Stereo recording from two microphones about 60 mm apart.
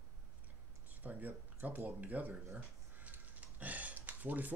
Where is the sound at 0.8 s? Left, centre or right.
Right.